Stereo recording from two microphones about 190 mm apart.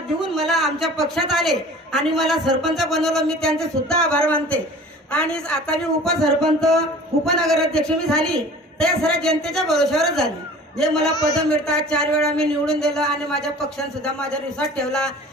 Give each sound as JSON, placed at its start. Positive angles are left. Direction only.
{"t": 0.3, "sound": "a woman's voice", "side_deg": 0}
{"t": 11.1, "sound": "a man's voice", "side_deg": 20}
{"t": 11.4, "sound": "a woman's voice", "side_deg": 5}